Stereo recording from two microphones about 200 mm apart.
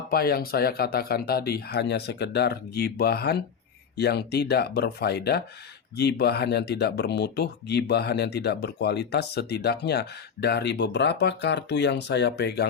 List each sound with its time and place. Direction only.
0.1 s speech: 50° left (ahead or behind)